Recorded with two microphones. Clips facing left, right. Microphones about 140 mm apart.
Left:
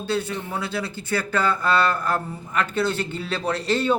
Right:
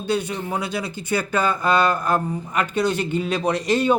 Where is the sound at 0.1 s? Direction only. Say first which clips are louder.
Right 3 dB; 15° right (ahead or behind).